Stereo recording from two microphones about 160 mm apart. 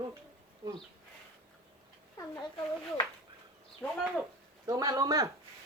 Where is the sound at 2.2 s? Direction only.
20° left (ahead or behind).